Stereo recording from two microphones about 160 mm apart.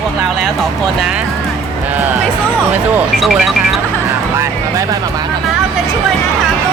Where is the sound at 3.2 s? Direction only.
Centre (ahead or behind).